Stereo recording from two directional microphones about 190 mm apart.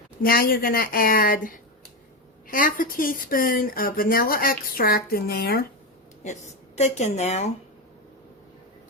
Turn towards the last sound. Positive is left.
turn(degrees=35)  # may be behind; listen again after turning